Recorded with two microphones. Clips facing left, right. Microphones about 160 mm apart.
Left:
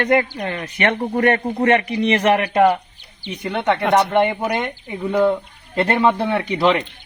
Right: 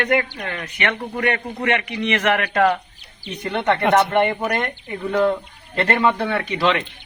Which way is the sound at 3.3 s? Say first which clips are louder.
Left 1 dB; 5° left (ahead or behind).